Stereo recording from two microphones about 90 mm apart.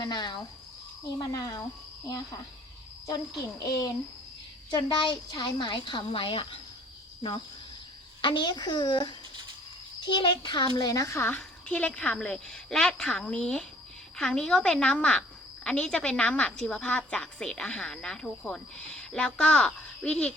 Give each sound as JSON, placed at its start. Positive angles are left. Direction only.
{"t": 0.0, "sound": "speech", "side_deg": 55}
{"t": 3.6, "sound": "speech", "side_deg": 40}
{"t": 4.7, "sound": "a woman's voice", "side_deg": 55}
{"t": 8.2, "sound": "a woman's voice", "side_deg": 60}
{"t": 10.8, "sound": "speech", "side_deg": 45}
{"t": 11.3, "sound": "a woman's voice", "side_deg": 15}